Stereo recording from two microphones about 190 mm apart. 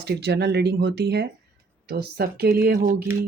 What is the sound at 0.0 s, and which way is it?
Speech, 60° right (ahead or behind).